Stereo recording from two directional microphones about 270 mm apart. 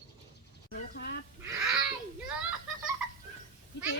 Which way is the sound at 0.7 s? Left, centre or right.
Left.